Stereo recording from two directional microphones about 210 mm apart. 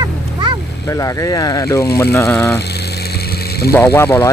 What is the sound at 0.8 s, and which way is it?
Speech, 15° left (ahead or behind).